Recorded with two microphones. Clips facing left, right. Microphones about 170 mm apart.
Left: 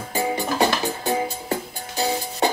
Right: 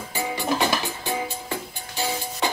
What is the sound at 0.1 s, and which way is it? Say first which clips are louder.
Music: left 2 dB; 35° left (ahead or behind).